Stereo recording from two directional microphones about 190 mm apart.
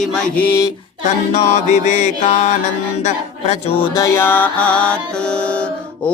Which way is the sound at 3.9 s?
15° left (ahead or behind).